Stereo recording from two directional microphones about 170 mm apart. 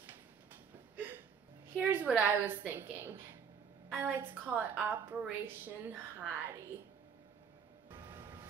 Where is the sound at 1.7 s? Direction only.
10° right (ahead or behind).